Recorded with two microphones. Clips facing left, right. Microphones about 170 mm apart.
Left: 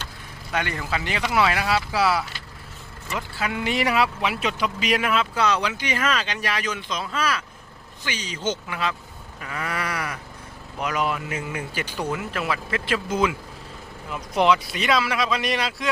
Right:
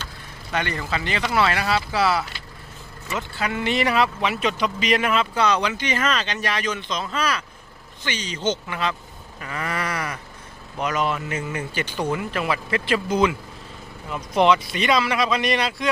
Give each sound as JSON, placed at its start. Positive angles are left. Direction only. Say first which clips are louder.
{"t": 0.5, "sound": "speech", "louder": "right 1 dB", "side_deg": 5}
{"t": 9.4, "sound": "sheep", "louder": "right 1 dB", "side_deg": 0}
{"t": 10.8, "sound": "speech", "louder": "right 2 dB", "side_deg": 5}